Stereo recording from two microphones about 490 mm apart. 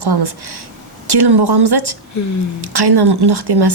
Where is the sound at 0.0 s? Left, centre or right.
Right.